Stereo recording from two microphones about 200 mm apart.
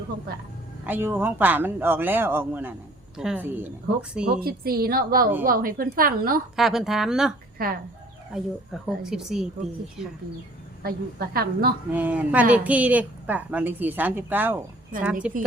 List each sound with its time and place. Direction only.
0.9 s a woman's voice: 10° right (ahead or behind)
4.3 s a woman's voice: 50° right (ahead or behind)
6.6 s speech: centre (ahead or behind)
7.6 s a woman's voice: 50° right (ahead or behind)
8.3 s speech: centre (ahead or behind)
10.8 s a woman's voice: 50° right (ahead or behind)
11.9 s a woman's voice: 10° right (ahead or behind)